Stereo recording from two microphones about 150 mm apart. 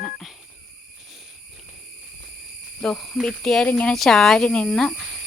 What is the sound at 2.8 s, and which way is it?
Speech, centre (ahead or behind).